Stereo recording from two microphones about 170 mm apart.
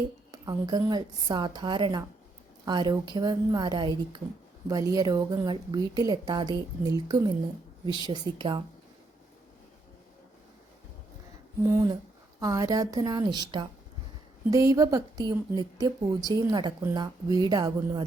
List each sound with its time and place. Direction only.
0.3 s a woman's voice: 25° right (ahead or behind)
11.6 s a woman's voice: 20° right (ahead or behind)